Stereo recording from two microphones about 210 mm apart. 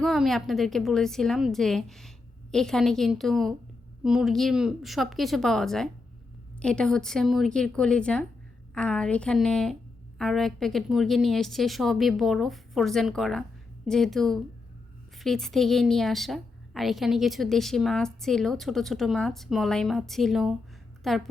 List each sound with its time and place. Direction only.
0.0 s a woman's voice: centre (ahead or behind)